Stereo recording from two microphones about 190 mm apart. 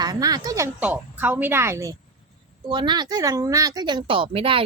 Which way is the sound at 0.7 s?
10° right (ahead or behind).